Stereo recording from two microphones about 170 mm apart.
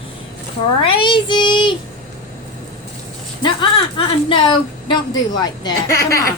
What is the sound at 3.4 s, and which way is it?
A woman's voice, 30° left (ahead or behind).